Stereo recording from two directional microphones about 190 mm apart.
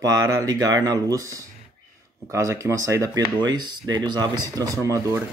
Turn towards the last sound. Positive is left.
turn(degrees=-15)  # may be behind; listen again after turning